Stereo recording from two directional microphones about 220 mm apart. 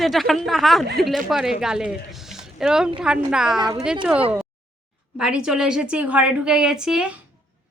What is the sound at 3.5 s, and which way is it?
Speech, 20° right (ahead or behind).